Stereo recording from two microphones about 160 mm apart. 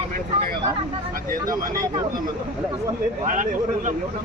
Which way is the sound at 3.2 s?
50° right (ahead or behind).